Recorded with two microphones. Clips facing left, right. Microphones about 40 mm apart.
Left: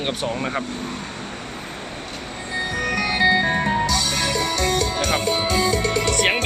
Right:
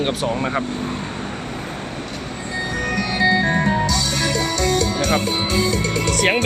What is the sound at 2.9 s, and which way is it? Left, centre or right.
Music, left.